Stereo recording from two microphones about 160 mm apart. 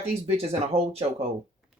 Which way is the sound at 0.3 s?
40° right (ahead or behind).